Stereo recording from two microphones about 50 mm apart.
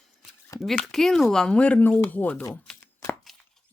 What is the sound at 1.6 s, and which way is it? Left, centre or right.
Speech, left.